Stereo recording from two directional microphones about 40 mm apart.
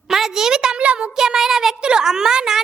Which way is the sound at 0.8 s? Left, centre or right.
Right.